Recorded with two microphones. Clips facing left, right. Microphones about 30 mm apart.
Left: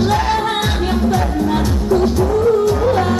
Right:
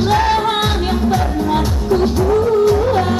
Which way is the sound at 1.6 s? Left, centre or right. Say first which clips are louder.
Left 1 dB; centre.